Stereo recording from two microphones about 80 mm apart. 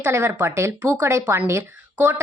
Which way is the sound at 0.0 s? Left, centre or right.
Right.